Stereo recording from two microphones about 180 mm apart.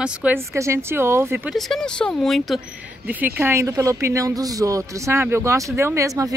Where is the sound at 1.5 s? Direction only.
Centre (ahead or behind).